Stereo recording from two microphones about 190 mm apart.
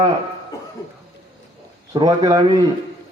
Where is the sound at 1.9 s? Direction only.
20° right (ahead or behind).